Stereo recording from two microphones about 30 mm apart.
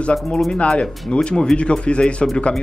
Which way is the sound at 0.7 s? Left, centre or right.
Left.